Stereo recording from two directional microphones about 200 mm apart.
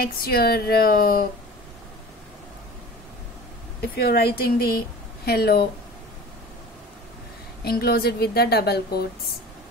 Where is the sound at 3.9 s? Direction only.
50° left (ahead or behind).